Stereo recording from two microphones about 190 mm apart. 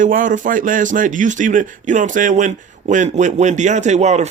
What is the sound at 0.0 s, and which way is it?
Speech, 45° right (ahead or behind).